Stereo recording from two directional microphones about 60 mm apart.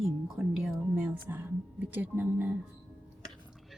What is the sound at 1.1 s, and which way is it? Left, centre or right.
Speech, right.